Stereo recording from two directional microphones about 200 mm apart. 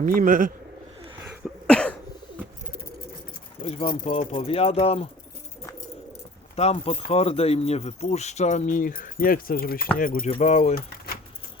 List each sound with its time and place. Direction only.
0.0 s a man's voice: 45° right (ahead or behind)
1.6 s cough: 5° left (ahead or behind)
3.6 s speech: 30° left (ahead or behind)
6.6 s speech: 30° left (ahead or behind)
10.2 s speech: 30° left (ahead or behind)